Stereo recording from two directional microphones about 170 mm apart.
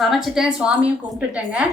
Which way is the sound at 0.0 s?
Centre (ahead or behind).